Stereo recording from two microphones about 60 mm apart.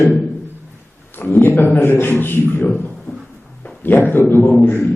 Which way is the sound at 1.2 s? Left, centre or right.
Left.